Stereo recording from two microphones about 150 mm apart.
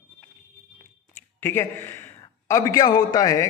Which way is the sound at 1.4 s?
15° left (ahead or behind).